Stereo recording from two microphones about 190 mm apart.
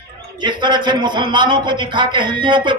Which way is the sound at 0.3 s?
25° right (ahead or behind).